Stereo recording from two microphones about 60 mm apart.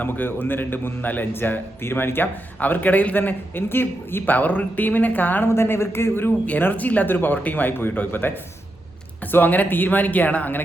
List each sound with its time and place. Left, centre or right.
0.0 s a man's voice: left
5.5 s a man's voice: left
6.6 s a man's voice: left